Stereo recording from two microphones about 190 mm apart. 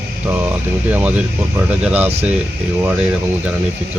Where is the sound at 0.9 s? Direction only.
10° right (ahead or behind).